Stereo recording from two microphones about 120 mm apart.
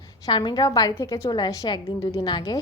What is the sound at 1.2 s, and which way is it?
A woman's voice, 35° left (ahead or behind).